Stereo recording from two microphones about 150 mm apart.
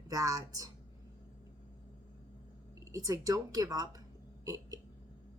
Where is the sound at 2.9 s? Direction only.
25° right (ahead or behind).